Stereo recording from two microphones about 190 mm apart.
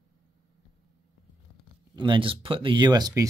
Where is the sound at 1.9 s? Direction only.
25° right (ahead or behind).